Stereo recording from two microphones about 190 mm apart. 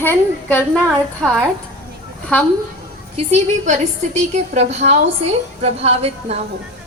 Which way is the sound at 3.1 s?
35° right (ahead or behind).